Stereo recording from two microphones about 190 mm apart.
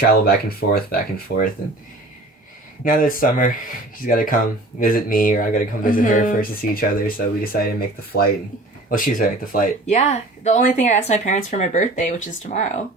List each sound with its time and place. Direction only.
0.1 s speech: 50° left (ahead or behind)
2.8 s speech: 45° left (ahead or behind)